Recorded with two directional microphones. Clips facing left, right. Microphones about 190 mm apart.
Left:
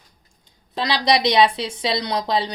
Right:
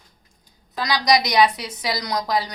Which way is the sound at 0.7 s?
25° left (ahead or behind).